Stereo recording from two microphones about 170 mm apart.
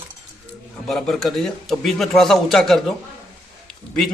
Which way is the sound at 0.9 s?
Centre (ahead or behind).